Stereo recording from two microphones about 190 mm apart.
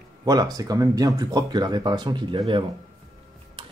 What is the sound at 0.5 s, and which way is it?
Speech, 20° right (ahead or behind).